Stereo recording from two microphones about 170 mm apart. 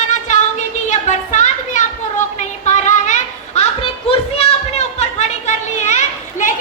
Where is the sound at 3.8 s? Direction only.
35° left (ahead or behind).